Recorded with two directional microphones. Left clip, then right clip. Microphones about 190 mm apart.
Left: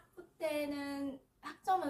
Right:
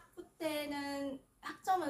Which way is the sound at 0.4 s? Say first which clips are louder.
Left 1 dB; 20° right (ahead or behind).